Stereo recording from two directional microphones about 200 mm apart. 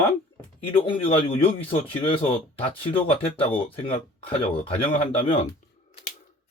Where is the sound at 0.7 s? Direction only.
25° left (ahead or behind).